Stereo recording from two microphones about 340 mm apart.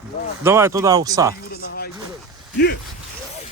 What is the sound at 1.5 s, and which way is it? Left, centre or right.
Speech, left.